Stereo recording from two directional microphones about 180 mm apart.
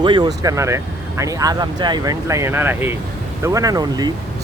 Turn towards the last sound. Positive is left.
turn(degrees=-20)  # may be behind; listen again after turning